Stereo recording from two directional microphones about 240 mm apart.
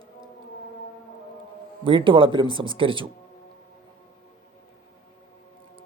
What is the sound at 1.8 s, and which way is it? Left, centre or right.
A man's voice, right.